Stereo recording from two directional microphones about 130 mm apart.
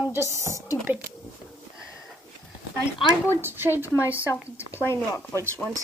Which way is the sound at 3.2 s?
20° right (ahead or behind).